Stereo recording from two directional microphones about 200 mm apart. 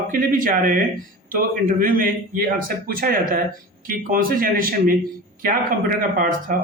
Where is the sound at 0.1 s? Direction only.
45° right (ahead or behind).